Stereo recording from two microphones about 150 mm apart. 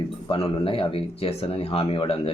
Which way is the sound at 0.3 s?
35° left (ahead or behind).